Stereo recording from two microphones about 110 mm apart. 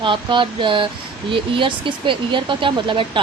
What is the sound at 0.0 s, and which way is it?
Speech, 50° right (ahead or behind).